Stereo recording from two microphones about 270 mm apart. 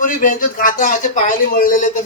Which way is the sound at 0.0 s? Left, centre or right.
Left.